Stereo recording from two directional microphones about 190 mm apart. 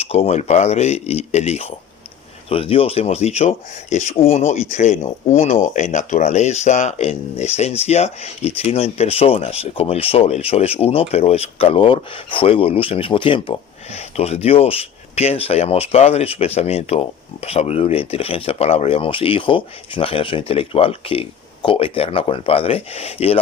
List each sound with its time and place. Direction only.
0.0 s speech: 30° left (ahead or behind)